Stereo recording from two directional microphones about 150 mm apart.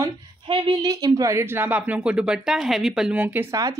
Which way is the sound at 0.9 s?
20° right (ahead or behind).